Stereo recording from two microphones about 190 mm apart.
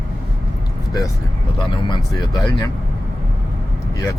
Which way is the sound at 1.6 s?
25° left (ahead or behind).